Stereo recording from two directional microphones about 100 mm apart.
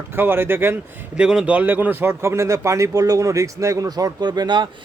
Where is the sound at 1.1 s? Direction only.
10° right (ahead or behind).